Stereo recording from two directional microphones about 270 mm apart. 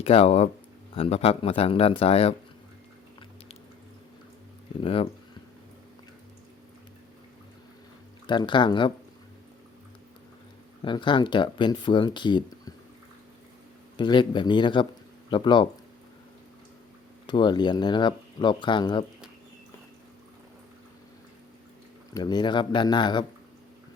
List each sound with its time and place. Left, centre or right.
0.0 s speech: left
4.8 s speech: left
8.3 s speech: centre
10.8 s speech: centre
13.9 s speech: centre
17.2 s speech: centre
22.1 s speech: centre